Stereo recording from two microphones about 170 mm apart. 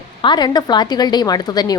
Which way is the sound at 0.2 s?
25° left (ahead or behind).